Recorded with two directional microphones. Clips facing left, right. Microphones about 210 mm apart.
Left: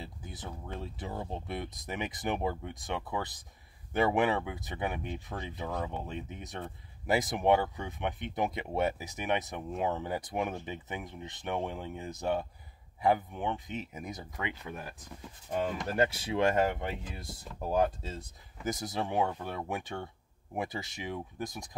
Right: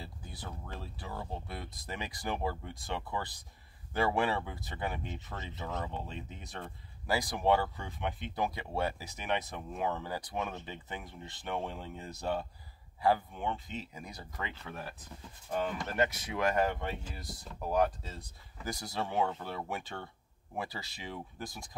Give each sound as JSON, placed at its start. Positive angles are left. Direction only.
{"t": 0.0, "sound": "speech", "side_deg": 20}